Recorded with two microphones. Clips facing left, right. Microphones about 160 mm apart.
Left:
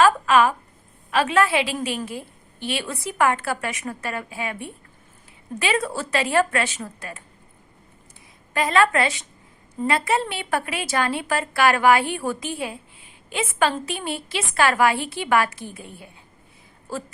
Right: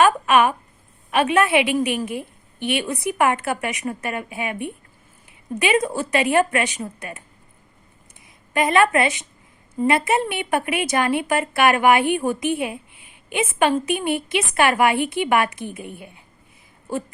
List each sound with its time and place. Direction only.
0.0 s a sound: 20° right (ahead or behind)
1.1 s a woman's voice: 20° right (ahead or behind)
8.5 s a woman's voice: 20° right (ahead or behind)